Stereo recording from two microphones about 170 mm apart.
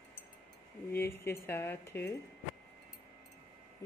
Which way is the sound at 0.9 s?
15° left (ahead or behind).